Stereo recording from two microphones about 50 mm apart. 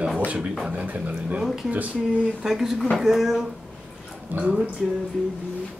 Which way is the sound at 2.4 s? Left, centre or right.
Centre.